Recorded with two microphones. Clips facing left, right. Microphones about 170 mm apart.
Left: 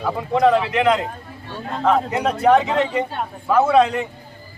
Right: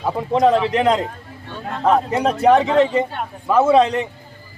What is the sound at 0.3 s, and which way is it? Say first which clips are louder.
Speech: right 1 dB; 40° right (ahead or behind).